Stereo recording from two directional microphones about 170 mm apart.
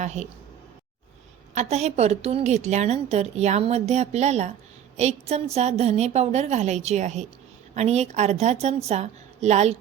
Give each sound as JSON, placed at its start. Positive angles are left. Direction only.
{"t": 0.0, "sound": "a woman's voice", "side_deg": -40}
{"t": 1.7, "sound": "a woman's voice", "side_deg": -40}